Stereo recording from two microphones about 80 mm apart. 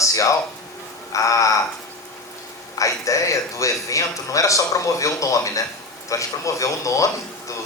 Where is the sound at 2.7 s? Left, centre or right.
Left.